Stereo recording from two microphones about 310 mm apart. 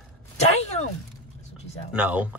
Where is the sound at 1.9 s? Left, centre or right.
Centre.